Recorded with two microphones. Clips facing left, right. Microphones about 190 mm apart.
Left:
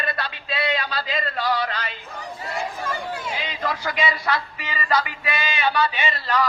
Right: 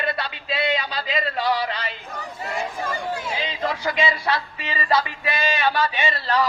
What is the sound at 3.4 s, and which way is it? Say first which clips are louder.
A man's voice: right 2 dB; 25° right (ahead or behind).